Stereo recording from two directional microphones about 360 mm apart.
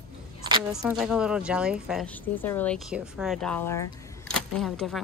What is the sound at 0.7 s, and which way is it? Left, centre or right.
A woman's voice, centre.